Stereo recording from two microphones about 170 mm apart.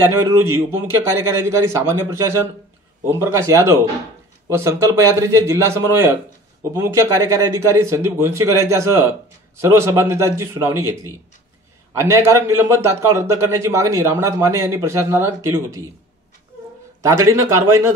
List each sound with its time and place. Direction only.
0.3 s a man's voice: 15° right (ahead or behind)
17.0 s a man's voice: 20° right (ahead or behind)